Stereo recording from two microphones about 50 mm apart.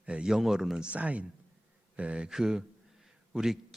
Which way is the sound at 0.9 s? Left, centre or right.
Right.